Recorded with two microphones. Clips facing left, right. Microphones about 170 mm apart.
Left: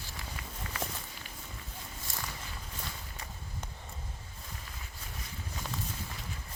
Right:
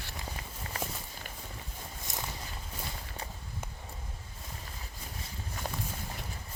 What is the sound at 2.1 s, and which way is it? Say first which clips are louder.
Walk: right 2 dB; 20° right (ahead or behind).